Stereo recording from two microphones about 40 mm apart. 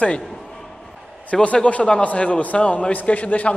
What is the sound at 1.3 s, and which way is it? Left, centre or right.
Speech, centre.